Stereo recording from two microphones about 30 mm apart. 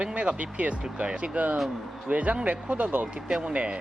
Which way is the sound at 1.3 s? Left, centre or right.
Right.